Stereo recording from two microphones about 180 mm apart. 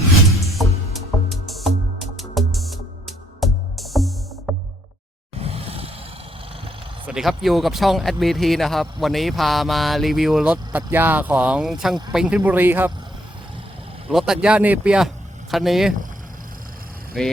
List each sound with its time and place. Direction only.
0.5 s music: centre (ahead or behind)
5.4 s vehicle: 35° right (ahead or behind)
7.1 s speech: centre (ahead or behind)
14.1 s speech: centre (ahead or behind)
17.2 s speech: centre (ahead or behind)